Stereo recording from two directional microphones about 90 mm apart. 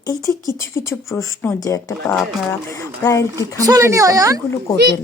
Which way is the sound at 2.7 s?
40° left (ahead or behind).